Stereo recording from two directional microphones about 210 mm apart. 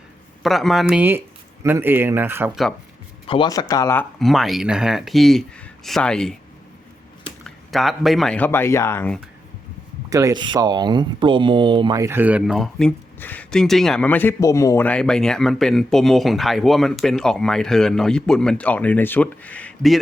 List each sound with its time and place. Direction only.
0.4 s speech: centre (ahead or behind)
3.2 s speech: 20° left (ahead or behind)
4.2 s speech: centre (ahead or behind)
7.4 s speech: centre (ahead or behind)
10.1 s speech: 15° right (ahead or behind); by 20.0 s 5° left (ahead or behind)